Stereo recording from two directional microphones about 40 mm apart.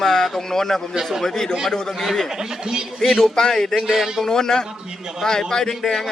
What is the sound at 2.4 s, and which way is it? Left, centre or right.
Speech, centre.